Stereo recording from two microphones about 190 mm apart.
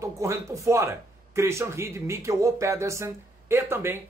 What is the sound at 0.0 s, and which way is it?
Speech, 15° right (ahead or behind).